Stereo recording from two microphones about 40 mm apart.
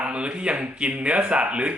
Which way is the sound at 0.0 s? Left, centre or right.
Right.